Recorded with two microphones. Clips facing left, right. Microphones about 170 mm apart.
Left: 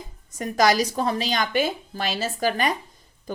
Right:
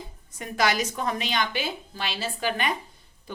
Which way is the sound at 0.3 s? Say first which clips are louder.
Left 5 dB; 40° left (ahead or behind).